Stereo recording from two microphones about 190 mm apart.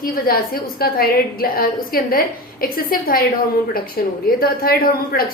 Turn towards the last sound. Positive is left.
turn(degrees=50)  # may be behind; listen again after turning